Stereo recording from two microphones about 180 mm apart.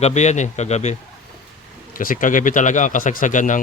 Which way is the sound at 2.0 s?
50° left (ahead or behind).